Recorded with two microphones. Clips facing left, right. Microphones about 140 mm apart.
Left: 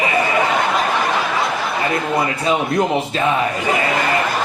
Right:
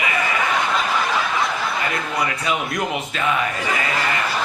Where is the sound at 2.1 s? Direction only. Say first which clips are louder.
Left 5 dB; 25° left (ahead or behind).